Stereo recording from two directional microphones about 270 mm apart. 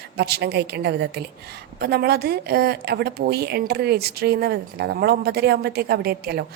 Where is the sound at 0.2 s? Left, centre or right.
Right.